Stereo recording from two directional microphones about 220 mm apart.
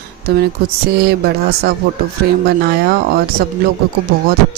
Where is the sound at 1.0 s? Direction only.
45° right (ahead or behind).